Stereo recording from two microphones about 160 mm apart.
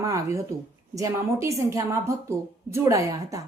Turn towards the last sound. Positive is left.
turn(degrees=-20)  # may be behind; listen again after turning